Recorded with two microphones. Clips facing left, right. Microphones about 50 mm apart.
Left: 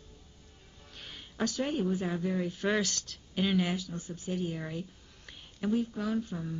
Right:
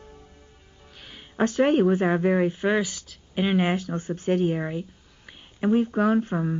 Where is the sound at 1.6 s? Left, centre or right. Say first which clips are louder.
Right 14 dB; right.